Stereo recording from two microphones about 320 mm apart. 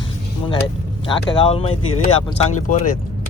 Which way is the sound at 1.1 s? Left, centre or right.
Centre.